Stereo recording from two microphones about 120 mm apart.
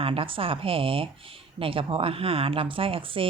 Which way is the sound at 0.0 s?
50° right (ahead or behind).